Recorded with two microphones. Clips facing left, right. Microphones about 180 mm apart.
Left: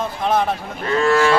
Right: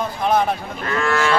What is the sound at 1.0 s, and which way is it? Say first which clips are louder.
Cattle: left 5 dB; 30° left (ahead or behind).